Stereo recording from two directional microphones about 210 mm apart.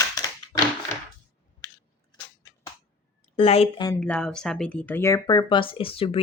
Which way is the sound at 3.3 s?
30° left (ahead or behind).